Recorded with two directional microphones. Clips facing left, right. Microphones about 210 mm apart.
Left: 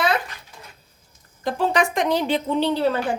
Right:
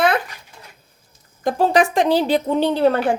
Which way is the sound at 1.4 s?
40° right (ahead or behind).